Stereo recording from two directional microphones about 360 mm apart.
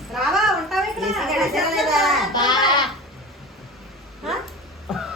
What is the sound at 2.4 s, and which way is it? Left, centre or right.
Goat, centre.